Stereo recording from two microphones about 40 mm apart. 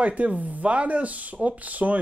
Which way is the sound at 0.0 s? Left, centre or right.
Right.